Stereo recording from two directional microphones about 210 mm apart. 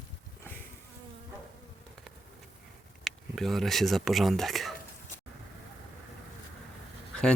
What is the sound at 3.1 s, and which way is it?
Speech, centre (ahead or behind).